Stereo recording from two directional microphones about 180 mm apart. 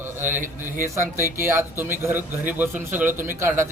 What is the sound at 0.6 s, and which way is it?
A man's voice, 15° right (ahead or behind).